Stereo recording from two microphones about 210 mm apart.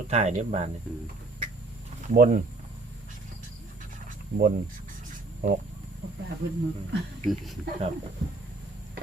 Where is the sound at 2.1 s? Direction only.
40° right (ahead or behind).